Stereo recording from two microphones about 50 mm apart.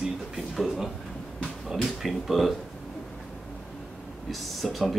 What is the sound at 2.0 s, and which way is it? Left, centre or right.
Speech, centre.